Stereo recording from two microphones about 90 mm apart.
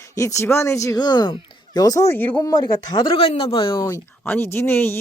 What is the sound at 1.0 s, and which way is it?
Speech, 55° left (ahead or behind).